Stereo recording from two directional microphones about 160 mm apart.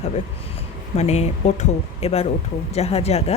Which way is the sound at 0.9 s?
45° left (ahead or behind).